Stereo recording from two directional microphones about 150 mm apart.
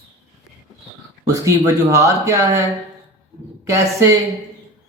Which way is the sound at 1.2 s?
20° right (ahead or behind).